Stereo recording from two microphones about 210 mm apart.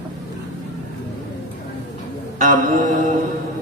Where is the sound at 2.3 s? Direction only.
35° right (ahead or behind).